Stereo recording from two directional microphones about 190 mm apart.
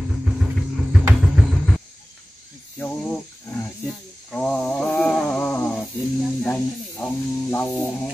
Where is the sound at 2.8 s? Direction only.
5° left (ahead or behind).